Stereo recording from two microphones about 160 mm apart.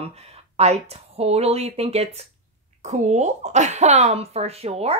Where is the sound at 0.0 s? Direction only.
40° right (ahead or behind).